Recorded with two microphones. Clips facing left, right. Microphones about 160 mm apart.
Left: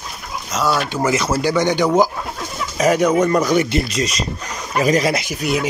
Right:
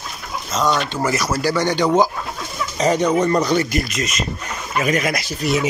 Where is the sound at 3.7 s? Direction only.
35° left (ahead or behind).